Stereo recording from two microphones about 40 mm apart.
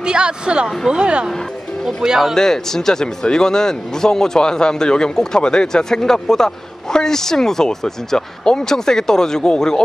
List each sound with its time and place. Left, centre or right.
0.0 s speech: right
2.0 s speech: centre
2.3 s speech: centre